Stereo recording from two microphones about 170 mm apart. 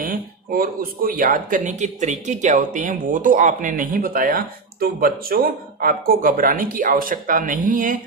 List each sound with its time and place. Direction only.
0.0 s speech: 55° right (ahead or behind)